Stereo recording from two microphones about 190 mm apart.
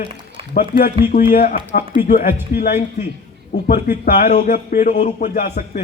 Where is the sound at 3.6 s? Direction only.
50° left (ahead or behind).